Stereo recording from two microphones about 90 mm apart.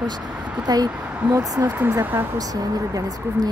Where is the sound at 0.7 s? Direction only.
45° right (ahead or behind).